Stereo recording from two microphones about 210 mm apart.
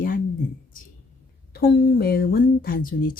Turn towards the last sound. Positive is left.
turn(degrees=40)  # may be behind; listen again after turning